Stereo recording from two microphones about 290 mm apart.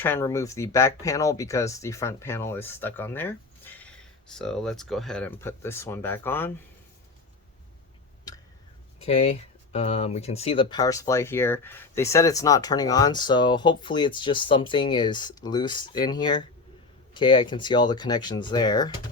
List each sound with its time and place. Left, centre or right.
0.0 s speech: centre
9.0 s speech: left